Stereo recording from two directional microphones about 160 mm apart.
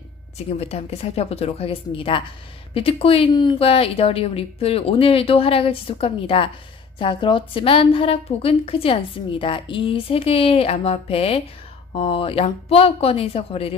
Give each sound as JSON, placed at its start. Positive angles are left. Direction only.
{"t": 0.6, "sound": "a woman's voice", "side_deg": 40}